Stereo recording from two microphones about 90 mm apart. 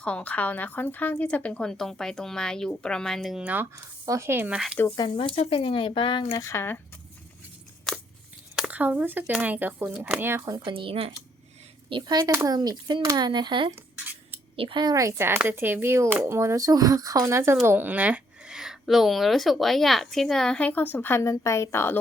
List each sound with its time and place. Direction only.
0.0 s a woman's voice: 15° left (ahead or behind)
3.3 s speech: 20° right (ahead or behind)
4.0 s speech: 35° right (ahead or behind)
4.5 s speech: 10° right (ahead or behind)
4.9 s speech: 70° left (ahead or behind)
6.3 s speech: 30° left (ahead or behind)
7.9 s crunch: 5° left (ahead or behind)
8.5 s speech: 15° right (ahead or behind)
9.9 s speech: 10° right (ahead or behind)
10.2 s speech: 25° right (ahead or behind)
10.7 s speech: 75° right (ahead or behind)
11.9 s speech: 60° right (ahead or behind)
14.5 s speech: 90° right
14.9 s speech: 30° right (ahead or behind); by 21.9 s 30° left (ahead or behind)